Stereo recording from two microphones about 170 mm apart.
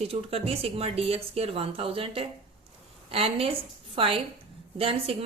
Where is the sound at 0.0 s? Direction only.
35° right (ahead or behind).